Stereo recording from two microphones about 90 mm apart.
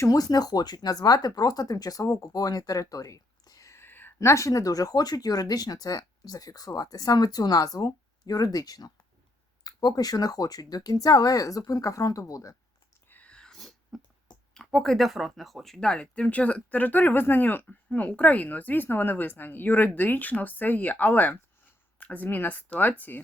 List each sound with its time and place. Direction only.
0.0 s speech: 40° left (ahead or behind)
13.1 s whispering: 15° left (ahead or behind)
14.5 s speech: 5° left (ahead or behind); by 23.2 s 20° left (ahead or behind)